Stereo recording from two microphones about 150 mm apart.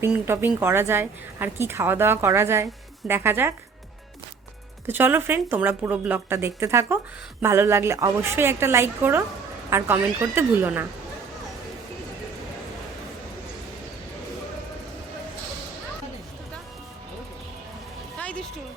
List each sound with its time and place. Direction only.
0.0 s a woman's voice: 15° right (ahead or behind)
4.9 s a woman's voice: 15° right (ahead or behind)
18.2 s music: 10° left (ahead or behind)